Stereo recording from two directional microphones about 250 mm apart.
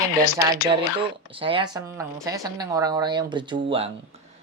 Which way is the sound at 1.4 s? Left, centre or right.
Right.